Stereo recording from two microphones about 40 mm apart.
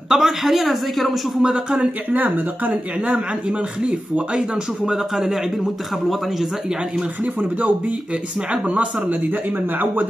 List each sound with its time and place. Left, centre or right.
0.1 s speech: centre
1.4 s speech: right
2.0 s speech: right
3.1 s speech: right
4.8 s a man's voice: centre